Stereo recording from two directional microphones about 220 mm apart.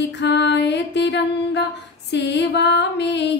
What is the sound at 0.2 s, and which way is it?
Music, 50° left (ahead or behind).